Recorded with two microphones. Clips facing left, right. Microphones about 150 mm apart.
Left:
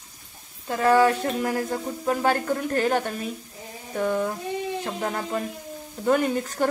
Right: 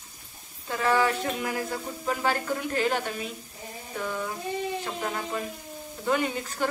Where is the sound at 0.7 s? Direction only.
40° left (ahead or behind).